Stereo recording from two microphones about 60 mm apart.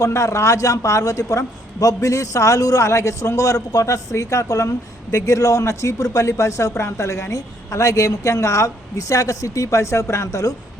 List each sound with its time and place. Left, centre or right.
0.0 s a man's voice: left